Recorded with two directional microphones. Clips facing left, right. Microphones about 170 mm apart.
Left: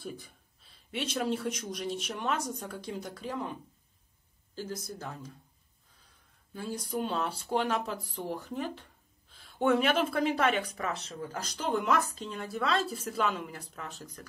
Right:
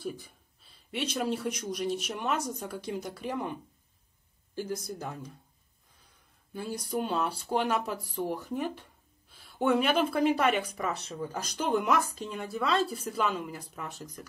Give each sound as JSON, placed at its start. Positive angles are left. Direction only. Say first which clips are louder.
{"t": 0.0, "sound": "speech", "louder": "right 4 dB", "side_deg": 0}
{"t": 4.6, "sound": "speech", "louder": "right 4 dB", "side_deg": -15}
{"t": 6.5, "sound": "speech", "louder": "right 2 dB", "side_deg": -10}
{"t": 9.3, "sound": "a woman's voice", "louder": "even", "side_deg": 0}